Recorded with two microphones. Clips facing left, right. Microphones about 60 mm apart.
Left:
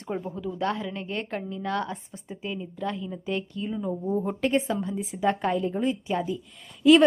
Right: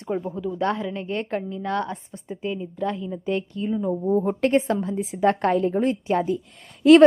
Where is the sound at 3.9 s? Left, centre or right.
Right.